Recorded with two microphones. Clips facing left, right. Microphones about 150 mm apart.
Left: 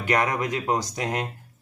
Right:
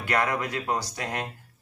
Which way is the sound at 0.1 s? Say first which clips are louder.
Left 3 dB; 20° left (ahead or behind).